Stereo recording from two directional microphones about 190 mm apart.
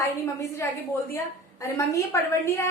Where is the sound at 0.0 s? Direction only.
15° left (ahead or behind).